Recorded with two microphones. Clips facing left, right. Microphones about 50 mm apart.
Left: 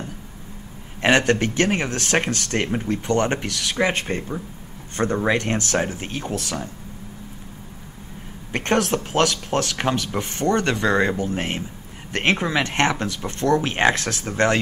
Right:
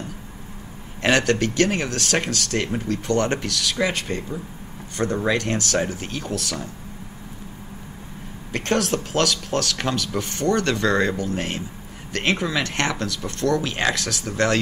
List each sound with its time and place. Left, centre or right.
1.0 s speech: left
8.5 s speech: left